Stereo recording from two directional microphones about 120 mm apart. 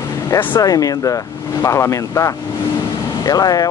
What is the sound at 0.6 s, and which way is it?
Speech, 30° left (ahead or behind).